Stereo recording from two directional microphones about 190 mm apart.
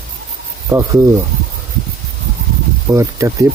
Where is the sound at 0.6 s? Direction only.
20° right (ahead or behind).